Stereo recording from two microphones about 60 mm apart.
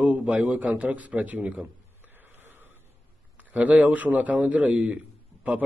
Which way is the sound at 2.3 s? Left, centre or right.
Right.